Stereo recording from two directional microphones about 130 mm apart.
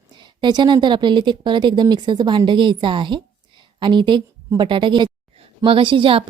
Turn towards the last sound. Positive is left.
turn(degrees=-45)  # may be behind; listen again after turning